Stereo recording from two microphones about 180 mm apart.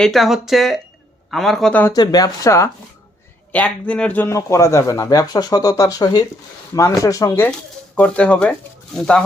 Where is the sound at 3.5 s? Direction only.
5° left (ahead or behind).